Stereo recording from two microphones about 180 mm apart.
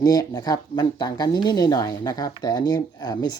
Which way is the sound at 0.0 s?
20° left (ahead or behind).